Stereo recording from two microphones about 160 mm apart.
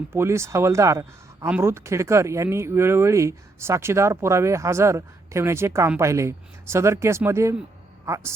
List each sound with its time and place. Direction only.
0.1 s a man's voice: 15° right (ahead or behind)